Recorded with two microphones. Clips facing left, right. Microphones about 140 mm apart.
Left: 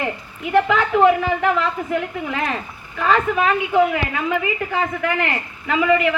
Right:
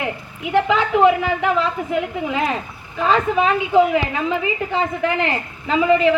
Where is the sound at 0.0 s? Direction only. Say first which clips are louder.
Even; 15° right (ahead or behind).